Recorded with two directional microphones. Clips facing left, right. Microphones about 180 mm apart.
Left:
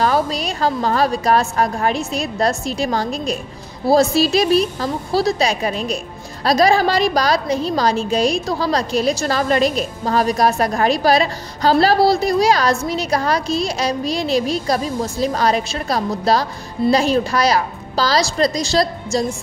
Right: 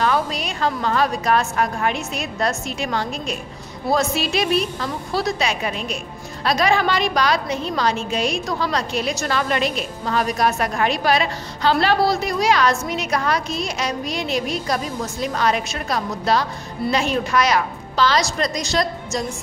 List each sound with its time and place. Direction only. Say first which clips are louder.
0.0 s a woman's voice: left 3 dB; 35° left (ahead or behind)